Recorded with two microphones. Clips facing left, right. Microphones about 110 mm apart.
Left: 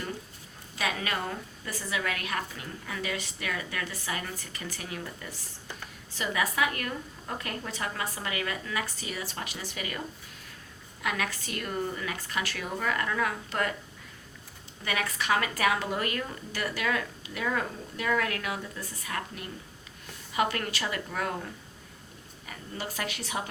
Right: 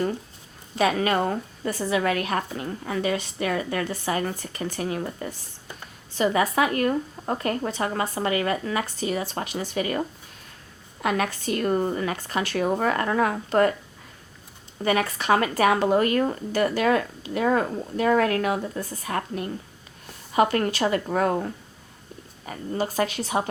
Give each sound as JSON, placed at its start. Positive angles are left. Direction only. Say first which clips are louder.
{"t": 0.8, "sound": "speech", "louder": "right 10 dB", "side_deg": -40}
{"t": 11.0, "sound": "a woman's voice", "louder": "right 8 dB", "side_deg": -35}
{"t": 14.8, "sound": "speech", "louder": "right 8 dB", "side_deg": -35}